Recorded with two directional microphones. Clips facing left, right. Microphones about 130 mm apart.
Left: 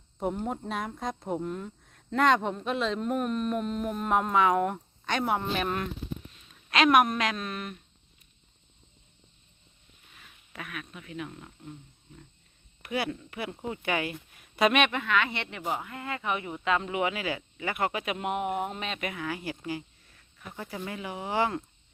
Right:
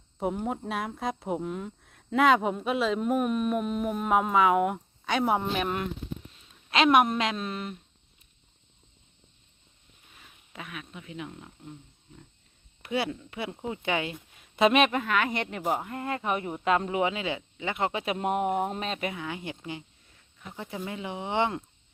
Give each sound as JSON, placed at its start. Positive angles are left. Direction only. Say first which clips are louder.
{"t": 0.2, "sound": "speech", "louder": "right 1 dB", "side_deg": -5}
{"t": 6.7, "sound": "speech", "louder": "right 1 dB", "side_deg": -25}
{"t": 10.2, "sound": "speech", "louder": "even", "side_deg": -20}
{"t": 12.8, "sound": "speech", "louder": "right 2 dB", "side_deg": -25}